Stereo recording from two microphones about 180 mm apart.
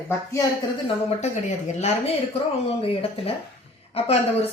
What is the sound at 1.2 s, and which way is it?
Speech, 40° left (ahead or behind).